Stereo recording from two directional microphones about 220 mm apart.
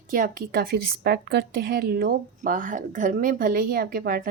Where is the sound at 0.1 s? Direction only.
40° right (ahead or behind).